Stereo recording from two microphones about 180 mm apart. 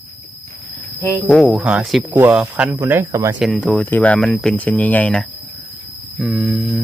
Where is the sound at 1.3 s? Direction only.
Centre (ahead or behind); by 3.3 s 15° right (ahead or behind).